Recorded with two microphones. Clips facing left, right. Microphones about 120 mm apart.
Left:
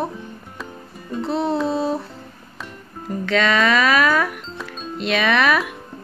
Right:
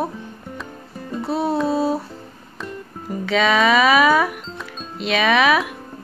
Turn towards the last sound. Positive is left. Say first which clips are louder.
# right 2 dB
turn(degrees=-5)  # may be behind; listen again after turning